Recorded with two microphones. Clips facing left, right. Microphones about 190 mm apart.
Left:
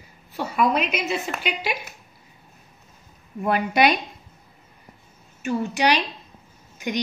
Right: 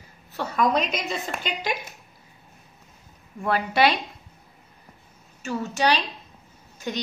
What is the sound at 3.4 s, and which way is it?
Speech, 20° left (ahead or behind).